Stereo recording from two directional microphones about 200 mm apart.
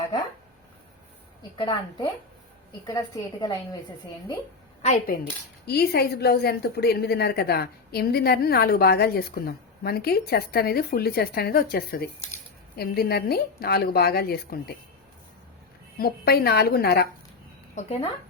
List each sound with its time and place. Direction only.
1.5 s a woman's voice: 25° left (ahead or behind)
3.4 s a woman's voice: 20° left (ahead or behind)
4.8 s speech: 40° left (ahead or behind)
16.0 s speech: 50° left (ahead or behind)
17.7 s speech: 30° left (ahead or behind)